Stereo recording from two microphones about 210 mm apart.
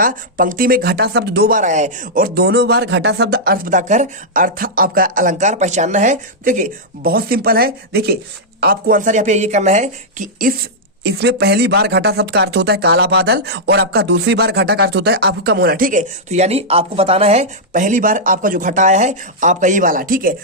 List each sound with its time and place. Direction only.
0.0 s a woman's voice: 40° right (ahead or behind)
11.0 s speech: 55° right (ahead or behind)